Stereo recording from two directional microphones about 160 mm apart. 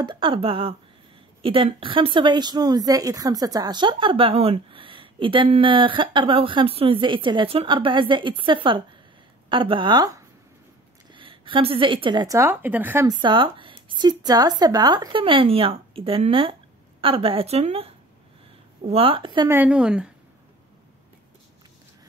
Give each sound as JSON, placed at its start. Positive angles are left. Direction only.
{"t": 0.0, "sound": "a woman's voice", "side_deg": -30}
{"t": 12.4, "sound": "speech", "side_deg": -15}
{"t": 13.2, "sound": "speech", "side_deg": -30}
{"t": 19.5, "sound": "speech", "side_deg": -10}